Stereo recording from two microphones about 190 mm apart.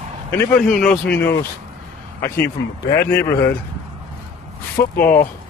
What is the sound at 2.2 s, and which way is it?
Speech, 15° left (ahead or behind).